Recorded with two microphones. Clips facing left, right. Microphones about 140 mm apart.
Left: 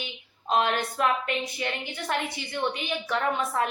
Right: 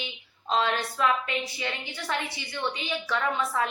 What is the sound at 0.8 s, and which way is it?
A woman's voice, 50° left (ahead or behind).